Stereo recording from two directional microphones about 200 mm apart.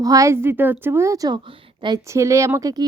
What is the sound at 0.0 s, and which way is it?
A woman's voice, 15° right (ahead or behind).